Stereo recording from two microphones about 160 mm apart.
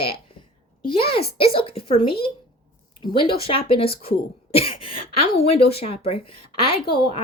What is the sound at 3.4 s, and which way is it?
Speech, 35° left (ahead or behind).